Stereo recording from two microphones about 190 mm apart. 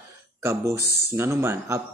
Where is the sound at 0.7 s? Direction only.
60° left (ahead or behind).